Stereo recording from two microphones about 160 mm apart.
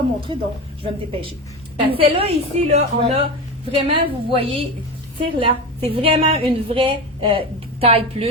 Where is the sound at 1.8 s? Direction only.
35° right (ahead or behind).